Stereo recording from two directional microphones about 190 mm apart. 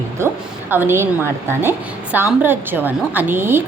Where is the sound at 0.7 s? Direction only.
10° right (ahead or behind).